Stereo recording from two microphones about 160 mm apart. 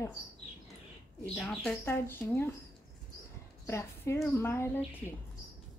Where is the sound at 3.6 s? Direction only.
15° left (ahead or behind).